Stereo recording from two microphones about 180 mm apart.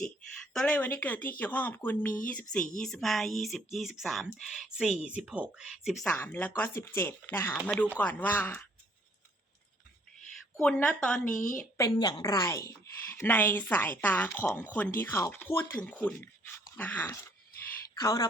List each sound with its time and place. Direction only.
0.5 s speech: 5° left (ahead or behind)
6.1 s speech: 10° left (ahead or behind)
10.2 s a sound: 5° left (ahead or behind)
11.3 s a woman's voice: 45° left (ahead or behind)
11.8 s a woman's voice: 20° left (ahead or behind)
18.0 s a woman's voice: 20° left (ahead or behind)